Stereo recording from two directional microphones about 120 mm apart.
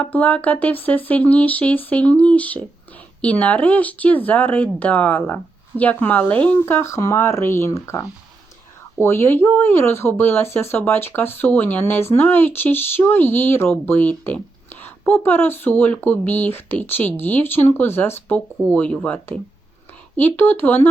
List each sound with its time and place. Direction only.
0.0 s speech: 15° left (ahead or behind)